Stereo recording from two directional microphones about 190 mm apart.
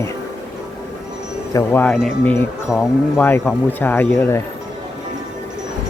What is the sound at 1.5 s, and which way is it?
Speech, 10° left (ahead or behind).